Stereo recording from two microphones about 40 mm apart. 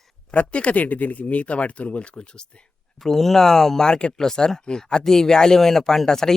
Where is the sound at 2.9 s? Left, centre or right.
Centre.